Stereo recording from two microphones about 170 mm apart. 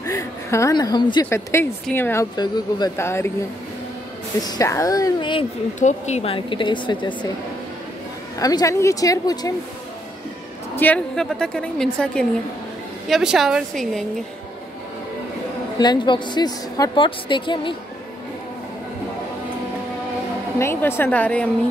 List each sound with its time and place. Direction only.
0.0 s a sound: 20° left (ahead or behind)
1.2 s speech: 15° left (ahead or behind)
2.3 s a woman's voice: 25° left (ahead or behind)
4.4 s a woman's voice: 20° left (ahead or behind)
5.8 s speech: 45° left (ahead or behind); by 7.1 s 30° left (ahead or behind)
8.4 s a woman's voice: 20° left (ahead or behind)
10.8 s a woman's voice: 5° left (ahead or behind)
15.8 s a woman's voice: 25° left (ahead or behind)
20.5 s speech: 15° left (ahead or behind)